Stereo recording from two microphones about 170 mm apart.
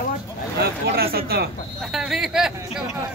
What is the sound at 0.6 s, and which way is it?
Speech, 65° right (ahead or behind).